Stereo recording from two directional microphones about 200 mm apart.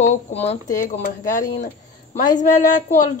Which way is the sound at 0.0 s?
40° left (ahead or behind).